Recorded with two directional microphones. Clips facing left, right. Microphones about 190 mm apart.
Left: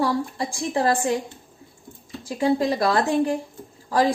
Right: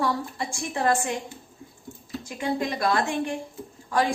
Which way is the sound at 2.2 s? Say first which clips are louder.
Left 7 dB; 35° left (ahead or behind).